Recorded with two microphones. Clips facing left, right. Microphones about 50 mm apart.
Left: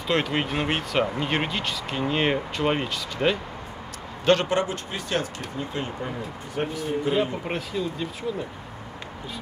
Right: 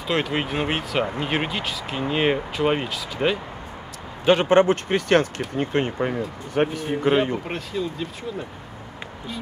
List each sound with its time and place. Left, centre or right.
0.0 s speech: centre
4.5 s speech: right
7.4 s speech: centre